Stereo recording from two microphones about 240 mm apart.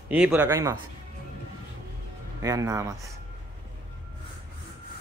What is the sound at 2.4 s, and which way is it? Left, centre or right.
Speech, centre.